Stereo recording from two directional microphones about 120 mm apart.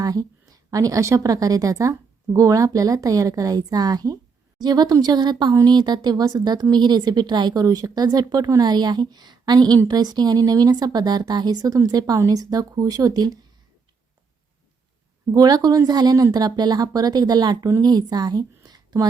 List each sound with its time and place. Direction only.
0.0 s a woman's voice: 30° right (ahead or behind)
15.3 s a woman's voice: 30° right (ahead or behind)